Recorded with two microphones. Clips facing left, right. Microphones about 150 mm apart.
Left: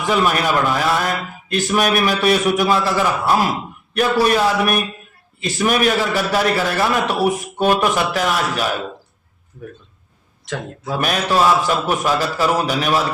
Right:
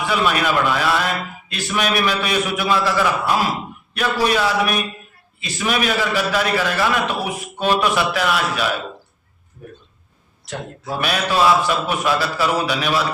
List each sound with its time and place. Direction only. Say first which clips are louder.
0.0 s a man's voice: left 2 dB; 40° left (ahead or behind)
10.4 s speech: left 3 dB; 90° left
11.0 s a man's voice: left 1 dB; 40° left (ahead or behind)